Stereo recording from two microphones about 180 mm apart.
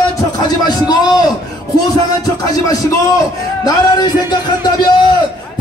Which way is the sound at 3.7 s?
20° left (ahead or behind).